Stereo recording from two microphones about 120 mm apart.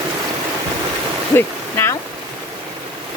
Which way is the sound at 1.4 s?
20° left (ahead or behind).